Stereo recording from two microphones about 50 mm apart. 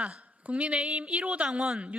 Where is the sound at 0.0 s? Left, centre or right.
Right.